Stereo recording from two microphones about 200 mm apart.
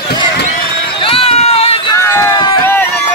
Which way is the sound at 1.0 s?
30° left (ahead or behind).